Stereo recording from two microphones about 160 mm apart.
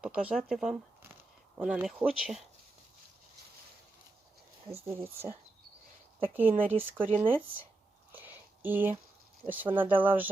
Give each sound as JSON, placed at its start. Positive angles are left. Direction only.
{"t": 0.0, "sound": "speech", "side_deg": -10}
{"t": 4.7, "sound": "speech", "side_deg": -15}
{"t": 8.1, "sound": "a sound", "side_deg": -10}
{"t": 9.5, "sound": "speech", "side_deg": -10}